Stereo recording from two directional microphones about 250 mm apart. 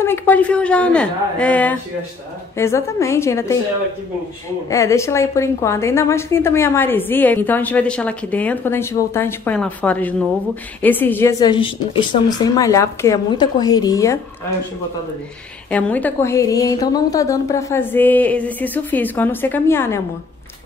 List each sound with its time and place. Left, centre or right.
0.0 s a woman's voice: centre
4.6 s a woman's voice: centre
15.7 s a woman's voice: centre